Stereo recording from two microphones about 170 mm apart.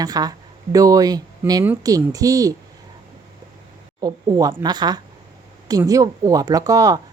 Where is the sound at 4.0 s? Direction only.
20° right (ahead or behind).